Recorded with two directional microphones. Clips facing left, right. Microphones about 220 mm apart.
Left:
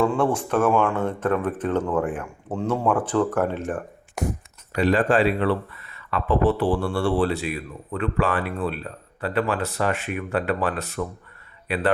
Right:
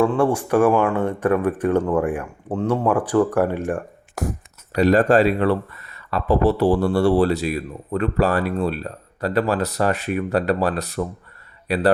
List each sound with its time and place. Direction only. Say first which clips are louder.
0.0 s speech: right 3 dB; 10° right (ahead or behind)
4.2 s speech: right 1 dB; centre (ahead or behind)
4.7 s speech: right 4 dB; 40° right (ahead or behind)